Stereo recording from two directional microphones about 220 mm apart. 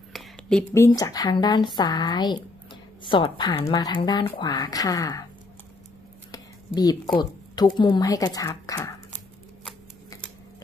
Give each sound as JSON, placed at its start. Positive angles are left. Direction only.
{"t": 0.1, "sound": "speech", "side_deg": 0}
{"t": 6.3, "sound": "a sound", "side_deg": 15}
{"t": 7.2, "sound": "speech", "side_deg": 20}